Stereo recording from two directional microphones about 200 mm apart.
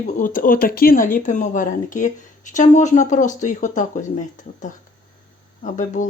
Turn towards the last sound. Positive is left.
turn(degrees=40)  # may be behind; listen again after turning